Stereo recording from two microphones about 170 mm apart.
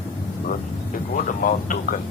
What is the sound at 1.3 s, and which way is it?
Speech, 50° left (ahead or behind).